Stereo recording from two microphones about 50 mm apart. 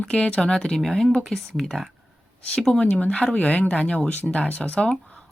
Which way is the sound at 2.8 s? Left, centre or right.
Left.